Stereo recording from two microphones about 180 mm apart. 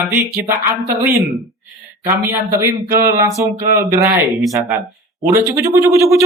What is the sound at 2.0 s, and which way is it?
Speech, 15° right (ahead or behind).